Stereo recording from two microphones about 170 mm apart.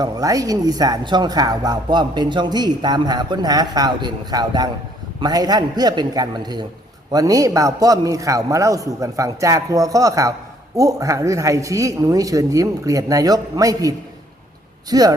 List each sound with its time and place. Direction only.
0.0 s speech: 20° right (ahead or behind)